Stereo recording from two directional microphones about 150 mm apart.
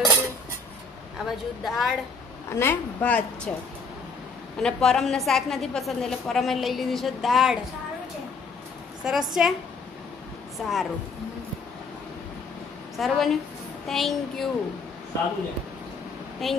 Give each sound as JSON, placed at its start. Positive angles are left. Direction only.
{"t": 0.0, "sound": "cutlery", "side_deg": -20}
{"t": 1.1, "sound": "a woman's voice", "side_deg": 0}
{"t": 2.5, "sound": "a woman's voice", "side_deg": 15}
{"t": 4.6, "sound": "a woman's voice", "side_deg": 5}
{"t": 9.0, "sound": "a woman's voice", "side_deg": -5}
{"t": 10.6, "sound": "a woman's voice", "side_deg": 0}
{"t": 12.9, "sound": "a woman's voice", "side_deg": 0}
{"t": 16.4, "sound": "a woman's voice", "side_deg": 0}